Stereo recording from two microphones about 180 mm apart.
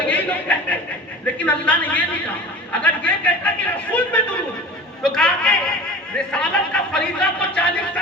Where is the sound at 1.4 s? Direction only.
5° left (ahead or behind).